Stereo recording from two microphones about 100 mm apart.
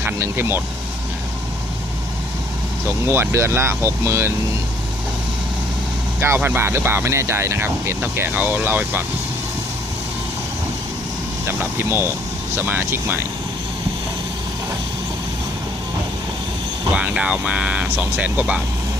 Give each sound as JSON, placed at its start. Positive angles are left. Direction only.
{"t": 0.0, "sound": "speech", "side_deg": -25}
{"t": 2.8, "sound": "speech", "side_deg": -25}
{"t": 6.1, "sound": "speech", "side_deg": -25}
{"t": 11.6, "sound": "speech", "side_deg": -25}
{"t": 16.9, "sound": "speech", "side_deg": -10}